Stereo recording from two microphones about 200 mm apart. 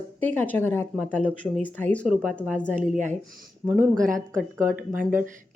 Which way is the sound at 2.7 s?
40° right (ahead or behind).